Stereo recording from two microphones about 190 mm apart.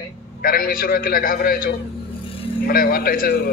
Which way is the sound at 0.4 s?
50° left (ahead or behind).